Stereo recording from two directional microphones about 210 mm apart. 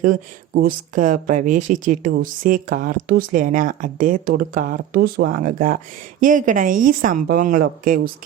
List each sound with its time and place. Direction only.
0.0 s speech: 40° right (ahead or behind)